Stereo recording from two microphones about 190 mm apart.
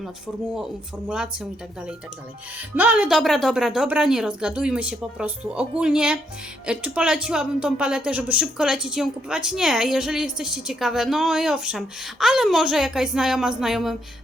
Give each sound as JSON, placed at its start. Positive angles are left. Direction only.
{"t": 0.5, "sound": "speech", "side_deg": -5}
{"t": 2.6, "sound": "speech", "side_deg": -10}